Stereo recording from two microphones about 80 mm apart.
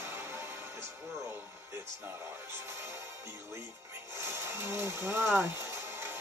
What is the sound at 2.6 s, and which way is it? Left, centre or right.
Music, right.